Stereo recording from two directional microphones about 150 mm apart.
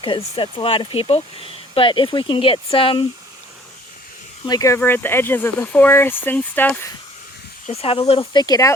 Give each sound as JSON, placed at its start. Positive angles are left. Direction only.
{"t": 0.0, "sound": "speech", "side_deg": 35}
{"t": 4.4, "sound": "speech", "side_deg": 25}
{"t": 7.7, "sound": "speech", "side_deg": 40}
{"t": 8.2, "sound": "speech", "side_deg": 30}